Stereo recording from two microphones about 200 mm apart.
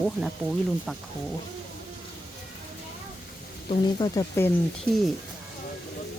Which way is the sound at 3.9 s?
20° left (ahead or behind).